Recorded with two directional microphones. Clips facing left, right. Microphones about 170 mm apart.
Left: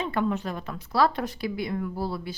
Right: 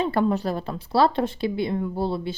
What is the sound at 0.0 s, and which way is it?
Speech, 35° right (ahead or behind).